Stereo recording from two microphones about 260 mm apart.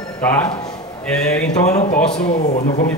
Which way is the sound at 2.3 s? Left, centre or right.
Left.